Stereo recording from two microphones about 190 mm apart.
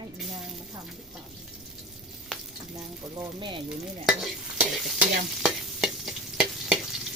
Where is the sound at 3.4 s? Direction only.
25° right (ahead or behind).